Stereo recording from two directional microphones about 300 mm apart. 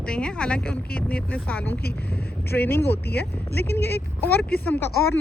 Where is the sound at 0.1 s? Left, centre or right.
Centre.